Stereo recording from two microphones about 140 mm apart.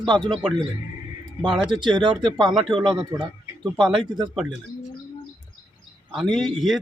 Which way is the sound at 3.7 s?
Centre (ahead or behind).